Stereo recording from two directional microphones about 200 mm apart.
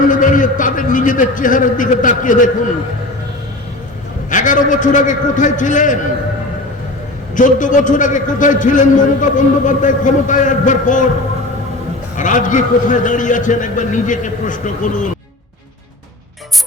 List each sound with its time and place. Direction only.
0.1 s a man's voice: 40° left (ahead or behind)
4.3 s a man's voice: 40° left (ahead or behind)
7.3 s a man's voice: 40° left (ahead or behind)
12.1 s a man's voice: 40° left (ahead or behind)